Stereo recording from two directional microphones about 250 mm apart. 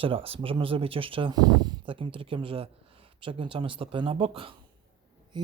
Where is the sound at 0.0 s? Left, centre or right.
Right.